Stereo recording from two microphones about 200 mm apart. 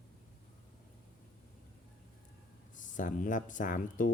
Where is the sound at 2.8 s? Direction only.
40° left (ahead or behind).